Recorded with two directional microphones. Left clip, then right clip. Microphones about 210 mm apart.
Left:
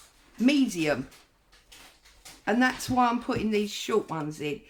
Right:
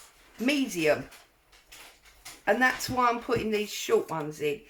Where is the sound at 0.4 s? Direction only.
30° left (ahead or behind).